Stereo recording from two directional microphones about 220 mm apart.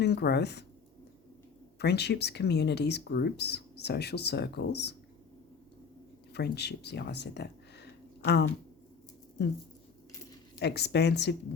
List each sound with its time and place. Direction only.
0.0 s speech: 50° left (ahead or behind)
1.8 s speech: 50° left (ahead or behind)
6.3 s speech: 50° left (ahead or behind)
10.6 s speech: 50° left (ahead or behind)